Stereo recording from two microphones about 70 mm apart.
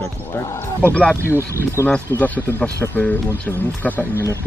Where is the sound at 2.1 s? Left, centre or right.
Left.